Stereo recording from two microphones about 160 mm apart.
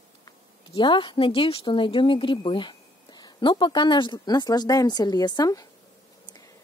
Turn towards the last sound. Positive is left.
turn(degrees=25)  # may be behind; listen again after turning